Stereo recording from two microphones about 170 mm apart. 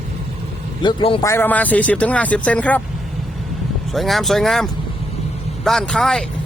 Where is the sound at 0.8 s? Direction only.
25° left (ahead or behind).